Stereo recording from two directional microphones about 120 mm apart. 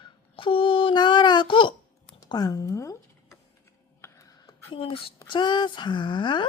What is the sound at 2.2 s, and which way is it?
Speech, 30° left (ahead or behind).